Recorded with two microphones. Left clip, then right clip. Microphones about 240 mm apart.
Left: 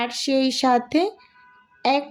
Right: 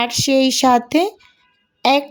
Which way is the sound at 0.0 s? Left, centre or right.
Right.